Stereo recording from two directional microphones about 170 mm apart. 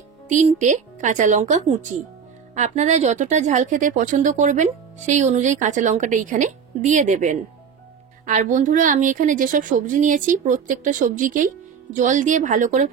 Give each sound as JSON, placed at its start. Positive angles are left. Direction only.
{"t": 0.3, "sound": "a woman's voice", "side_deg": -45}